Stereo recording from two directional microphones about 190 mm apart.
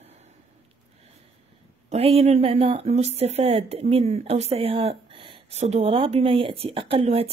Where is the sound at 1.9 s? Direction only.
30° right (ahead or behind).